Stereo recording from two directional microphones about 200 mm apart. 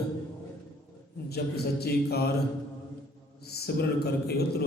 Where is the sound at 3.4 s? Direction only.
55° left (ahead or behind).